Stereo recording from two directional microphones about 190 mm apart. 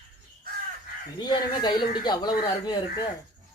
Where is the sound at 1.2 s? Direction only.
20° left (ahead or behind).